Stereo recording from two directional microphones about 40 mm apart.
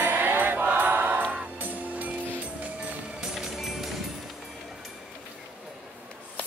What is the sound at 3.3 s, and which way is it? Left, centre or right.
Music, centre.